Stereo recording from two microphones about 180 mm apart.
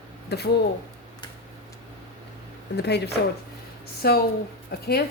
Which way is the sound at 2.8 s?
65° left (ahead or behind).